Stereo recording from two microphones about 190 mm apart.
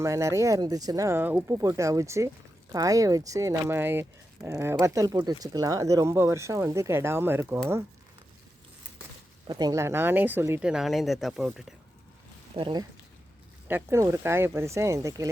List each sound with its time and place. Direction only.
0.0 s speech: 15° right (ahead or behind)
9.5 s speech: 20° right (ahead or behind); by 11.6 s centre (ahead or behind)
12.5 s speech: 25° right (ahead or behind)
13.7 s speech: 15° right (ahead or behind)